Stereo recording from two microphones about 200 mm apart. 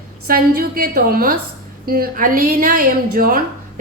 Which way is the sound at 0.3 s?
45° right (ahead or behind).